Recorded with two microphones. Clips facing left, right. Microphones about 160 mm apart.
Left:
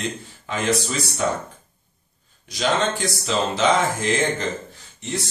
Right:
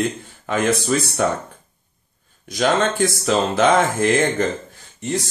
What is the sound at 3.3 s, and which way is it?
Speech, 50° right (ahead or behind).